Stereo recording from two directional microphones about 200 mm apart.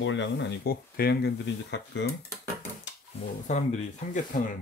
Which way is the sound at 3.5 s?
35° left (ahead or behind).